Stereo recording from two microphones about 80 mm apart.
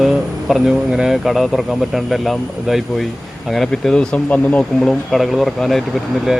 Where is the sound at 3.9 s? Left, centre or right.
Centre.